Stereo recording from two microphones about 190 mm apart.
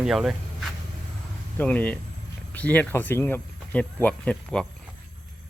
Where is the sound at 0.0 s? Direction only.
Centre (ahead or behind).